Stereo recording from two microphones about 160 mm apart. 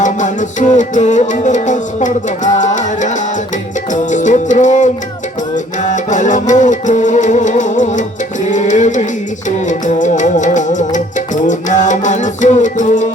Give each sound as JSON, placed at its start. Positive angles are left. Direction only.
{"t": 0.0, "sound": "music", "side_deg": 50}